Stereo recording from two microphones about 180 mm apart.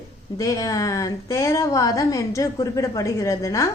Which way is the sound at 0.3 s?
20° left (ahead or behind).